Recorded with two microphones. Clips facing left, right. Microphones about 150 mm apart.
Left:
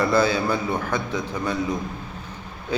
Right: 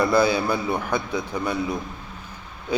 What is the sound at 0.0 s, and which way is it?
A man's voice, 10° right (ahead or behind).